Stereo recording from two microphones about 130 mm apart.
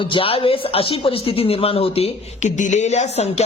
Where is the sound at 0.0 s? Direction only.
45° left (ahead or behind).